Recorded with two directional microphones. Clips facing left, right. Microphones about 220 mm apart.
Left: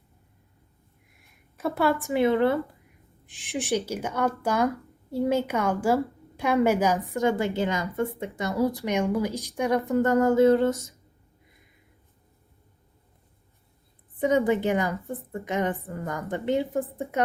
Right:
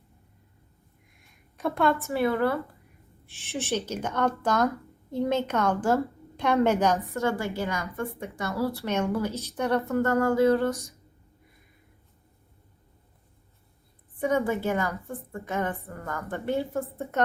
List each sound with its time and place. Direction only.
1.5 s a woman's voice: 5° left (ahead or behind); by 10.9 s 25° left (ahead or behind)
14.2 s a woman's voice: 20° left (ahead or behind)